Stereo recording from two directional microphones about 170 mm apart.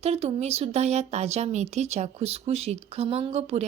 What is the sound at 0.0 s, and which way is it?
A woman's voice, 35° right (ahead or behind).